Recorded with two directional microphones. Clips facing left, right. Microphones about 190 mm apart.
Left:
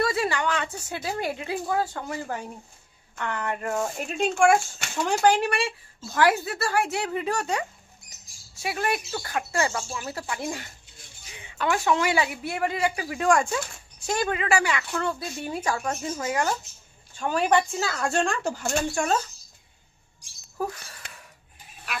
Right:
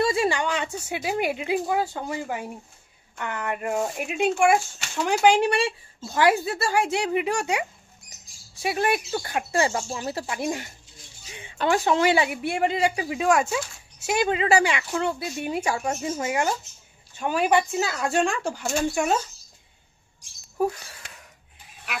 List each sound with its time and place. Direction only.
0.0 s a sound: 25° right (ahead or behind)
0.8 s speech: 15° right (ahead or behind)
5.2 s speech: 15° right (ahead or behind)
8.6 s speech: 25° right (ahead or behind)
10.4 s speech: 20° right (ahead or behind)
13.3 s speech: 5° right (ahead or behind)
14.3 s speech: 25° right (ahead or behind)
18.0 s speech: centre (ahead or behind)